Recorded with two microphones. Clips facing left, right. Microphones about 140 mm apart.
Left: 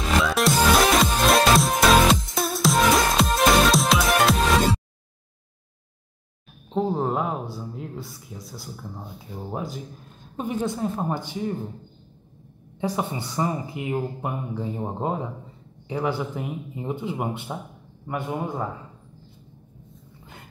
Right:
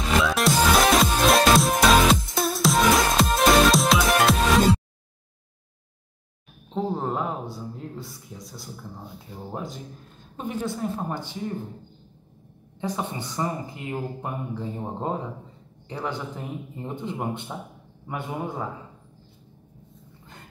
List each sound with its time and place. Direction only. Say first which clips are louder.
0.1 s music: even; centre (ahead or behind)
6.7 s speech: left 3 dB; 5° left (ahead or behind)
10.3 s speech: left 3 dB; 20° left (ahead or behind)
12.8 s speech: left 3 dB; 10° left (ahead or behind)